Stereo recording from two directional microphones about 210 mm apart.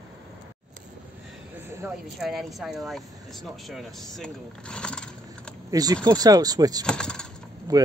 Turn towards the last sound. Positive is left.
turn(degrees=-15)  # may be behind; listen again after turning